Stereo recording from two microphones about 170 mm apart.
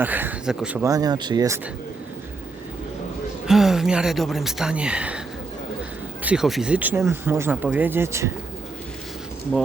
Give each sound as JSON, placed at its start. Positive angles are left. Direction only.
{"t": 0.0, "sound": "speech", "side_deg": -10}
{"t": 0.9, "sound": "speech", "side_deg": -20}
{"t": 3.4, "sound": "speech", "side_deg": 0}
{"t": 6.2, "sound": "speech", "side_deg": -5}